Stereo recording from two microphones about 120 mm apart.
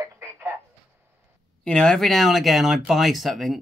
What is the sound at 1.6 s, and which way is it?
Speech, 5° left (ahead or behind).